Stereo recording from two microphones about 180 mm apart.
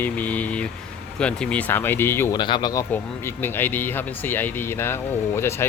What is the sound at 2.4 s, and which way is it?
Speech, 25° left (ahead or behind).